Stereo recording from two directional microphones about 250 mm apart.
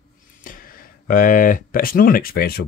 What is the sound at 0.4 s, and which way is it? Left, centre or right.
Speech, left.